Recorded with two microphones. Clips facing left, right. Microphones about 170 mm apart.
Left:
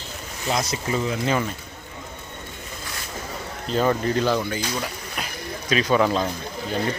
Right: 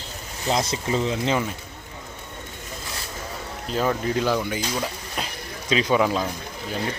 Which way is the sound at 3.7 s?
5° right (ahead or behind).